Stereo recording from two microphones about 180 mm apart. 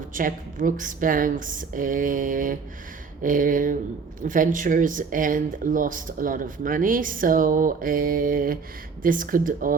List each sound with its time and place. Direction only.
0.1 s speech: 50° right (ahead or behind)